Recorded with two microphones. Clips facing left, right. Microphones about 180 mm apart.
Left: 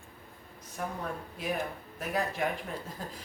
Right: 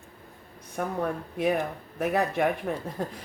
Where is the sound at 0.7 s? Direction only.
60° right (ahead or behind).